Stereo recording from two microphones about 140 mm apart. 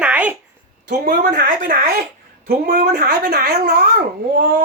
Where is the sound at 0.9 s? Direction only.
85° right.